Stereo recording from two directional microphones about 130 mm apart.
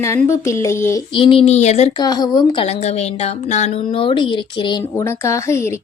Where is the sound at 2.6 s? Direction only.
55° left (ahead or behind).